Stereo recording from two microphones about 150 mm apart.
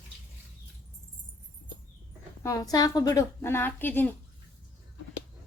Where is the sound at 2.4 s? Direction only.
25° left (ahead or behind).